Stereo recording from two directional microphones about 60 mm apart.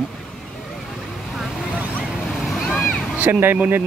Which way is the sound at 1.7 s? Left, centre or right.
Right.